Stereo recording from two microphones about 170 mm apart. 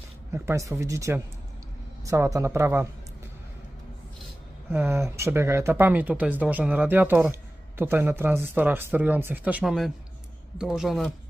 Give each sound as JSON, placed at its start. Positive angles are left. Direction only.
{"t": 0.3, "sound": "speech", "side_deg": -15}
{"t": 4.6, "sound": "a man's voice", "side_deg": -15}